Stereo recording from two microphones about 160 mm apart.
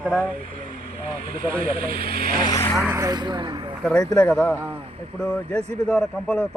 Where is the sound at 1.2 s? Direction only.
65° right (ahead or behind).